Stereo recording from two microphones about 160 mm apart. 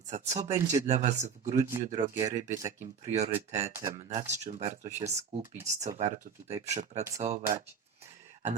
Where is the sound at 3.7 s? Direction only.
20° right (ahead or behind).